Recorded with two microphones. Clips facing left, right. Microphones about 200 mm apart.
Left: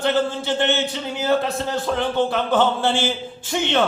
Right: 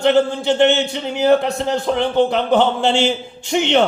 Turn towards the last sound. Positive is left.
turn(degrees=-15)  # may be behind; listen again after turning